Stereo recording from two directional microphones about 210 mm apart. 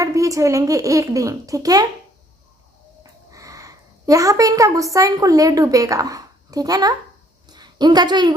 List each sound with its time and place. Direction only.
0.0 s a child's voice: 15° right (ahead or behind)
3.0 s a woman's voice: 15° right (ahead or behind)
7.4 s a sound: 20° right (ahead or behind)